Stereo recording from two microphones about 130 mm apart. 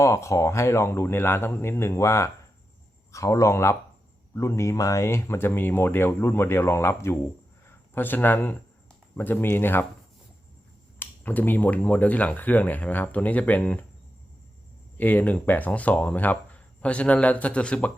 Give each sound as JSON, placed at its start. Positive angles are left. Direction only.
{"t": 0.0, "sound": "speech", "side_deg": 20}
{"t": 11.0, "sound": "speech", "side_deg": 15}
{"t": 14.9, "sound": "speech", "side_deg": 15}